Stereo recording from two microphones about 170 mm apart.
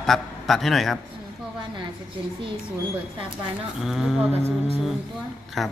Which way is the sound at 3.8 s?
Centre (ahead or behind).